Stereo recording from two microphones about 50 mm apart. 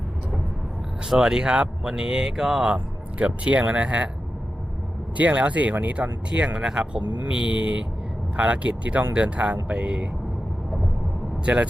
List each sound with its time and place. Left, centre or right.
1.0 s speech: centre
2.4 s speech: centre
2.7 s speech: right
5.1 s speech: right
11.4 s speech: right